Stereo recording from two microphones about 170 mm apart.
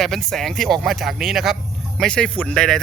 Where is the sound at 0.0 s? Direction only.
Centre (ahead or behind).